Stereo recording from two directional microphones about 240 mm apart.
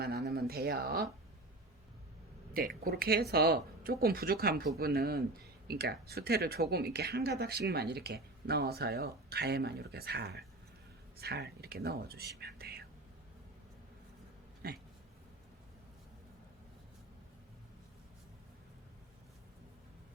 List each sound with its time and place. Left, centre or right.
0.0 s a sound: right
2.5 s speech: right
14.6 s speech: right